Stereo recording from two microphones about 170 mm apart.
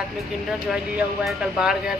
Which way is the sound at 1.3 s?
5° right (ahead or behind).